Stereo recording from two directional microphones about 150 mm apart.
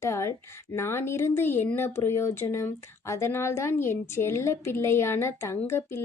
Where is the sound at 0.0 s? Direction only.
20° left (ahead or behind).